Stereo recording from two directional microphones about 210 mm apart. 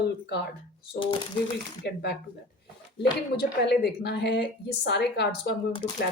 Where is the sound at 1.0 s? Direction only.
25° left (ahead or behind).